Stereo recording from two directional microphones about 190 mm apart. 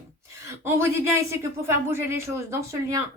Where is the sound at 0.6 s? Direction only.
15° right (ahead or behind).